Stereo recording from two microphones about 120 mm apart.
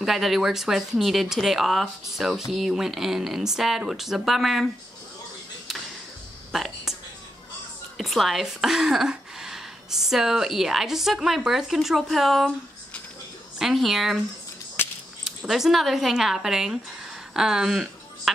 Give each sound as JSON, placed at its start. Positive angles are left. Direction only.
{"t": 0.0, "sound": "speech", "side_deg": 0}
{"t": 6.5, "sound": "a sound", "side_deg": -5}
{"t": 8.0, "sound": "a woman's voice", "side_deg": 0}
{"t": 13.6, "sound": "speech", "side_deg": 0}
{"t": 14.8, "sound": "a sound", "side_deg": 20}
{"t": 15.2, "sound": "speech", "side_deg": 0}